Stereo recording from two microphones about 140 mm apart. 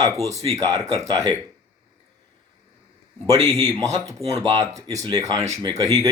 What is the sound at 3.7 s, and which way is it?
Speech, 25° right (ahead or behind).